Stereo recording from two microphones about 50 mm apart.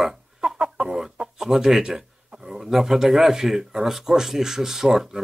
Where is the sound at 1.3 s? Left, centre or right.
Centre.